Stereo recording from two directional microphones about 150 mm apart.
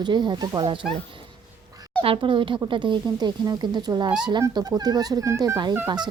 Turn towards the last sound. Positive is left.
turn(degrees=-30)  # may be behind; listen again after turning